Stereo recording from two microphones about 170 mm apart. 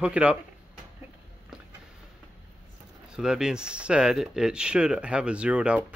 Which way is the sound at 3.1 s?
5° right (ahead or behind).